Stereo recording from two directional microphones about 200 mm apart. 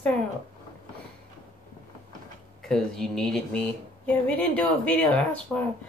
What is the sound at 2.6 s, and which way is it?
Speech, centre (ahead or behind).